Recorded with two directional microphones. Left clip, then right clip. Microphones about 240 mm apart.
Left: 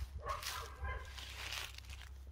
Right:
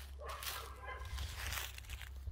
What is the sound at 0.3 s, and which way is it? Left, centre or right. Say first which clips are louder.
Dog: left 3 dB; centre.